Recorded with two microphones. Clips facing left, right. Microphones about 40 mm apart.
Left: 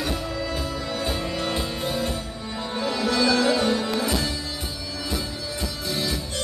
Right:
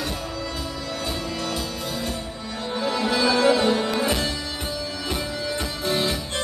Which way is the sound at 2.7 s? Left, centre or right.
Centre.